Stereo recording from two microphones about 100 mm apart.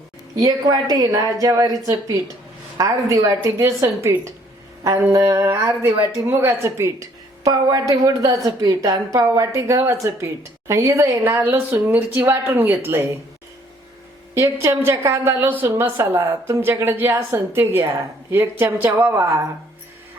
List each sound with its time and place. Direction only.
0.3 s a woman's voice: 40° right (ahead or behind)
7.4 s a woman's voice: 35° right (ahead or behind); by 13.0 s 20° right (ahead or behind)
14.3 s a woman's voice: 30° right (ahead or behind)